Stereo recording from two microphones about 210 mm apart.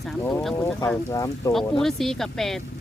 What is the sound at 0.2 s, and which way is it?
Speech, 10° left (ahead or behind).